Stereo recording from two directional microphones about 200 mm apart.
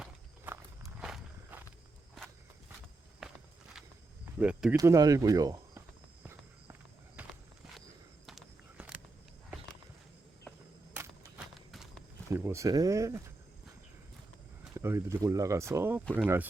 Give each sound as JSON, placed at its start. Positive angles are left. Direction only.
{"t": 0.0, "sound": "walk", "side_deg": -5}
{"t": 3.2, "sound": "walk", "side_deg": 0}
{"t": 4.4, "sound": "speech", "side_deg": -5}
{"t": 4.8, "sound": "speech", "side_deg": -20}
{"t": 7.2, "sound": "walk", "side_deg": -5}
{"t": 8.3, "sound": "a sound", "side_deg": -5}
{"t": 10.9, "sound": "a sound", "side_deg": -5}
{"t": 12.3, "sound": "speech", "side_deg": -15}
{"t": 14.8, "sound": "speech", "side_deg": -15}